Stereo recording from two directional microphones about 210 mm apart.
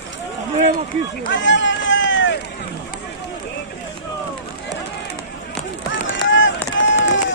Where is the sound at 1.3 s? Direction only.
60° left (ahead or behind).